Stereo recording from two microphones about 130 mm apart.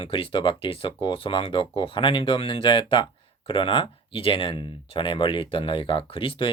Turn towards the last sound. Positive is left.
turn(degrees=40)  # may be behind; listen again after turning